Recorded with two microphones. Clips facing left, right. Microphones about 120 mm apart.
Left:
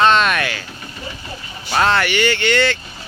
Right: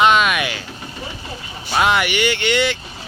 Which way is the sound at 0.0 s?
10° right (ahead or behind).